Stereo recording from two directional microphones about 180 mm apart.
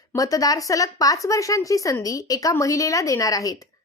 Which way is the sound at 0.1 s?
20° left (ahead or behind).